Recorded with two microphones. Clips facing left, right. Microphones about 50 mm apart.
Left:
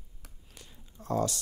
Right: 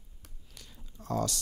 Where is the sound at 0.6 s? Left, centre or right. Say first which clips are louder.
Left 1 dB; centre.